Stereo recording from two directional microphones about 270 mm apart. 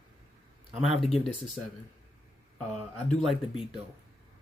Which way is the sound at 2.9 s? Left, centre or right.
Centre.